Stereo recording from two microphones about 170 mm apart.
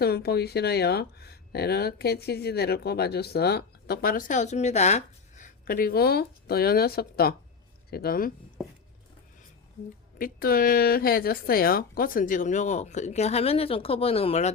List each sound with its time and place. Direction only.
0.0 s speech: 70° left (ahead or behind); by 5.5 s 40° left (ahead or behind)
5.6 s speech: 60° left (ahead or behind)
10.2 s a woman's voice: 60° left (ahead or behind); by 14.5 s 35° left (ahead or behind)